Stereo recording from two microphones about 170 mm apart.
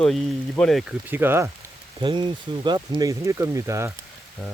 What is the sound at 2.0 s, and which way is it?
Speech, 25° right (ahead or behind).